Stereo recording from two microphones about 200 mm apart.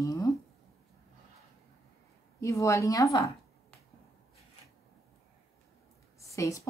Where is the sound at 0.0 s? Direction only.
15° left (ahead or behind).